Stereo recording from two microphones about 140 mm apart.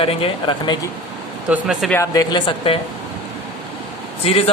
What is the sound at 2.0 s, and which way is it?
Speech, 25° left (ahead or behind).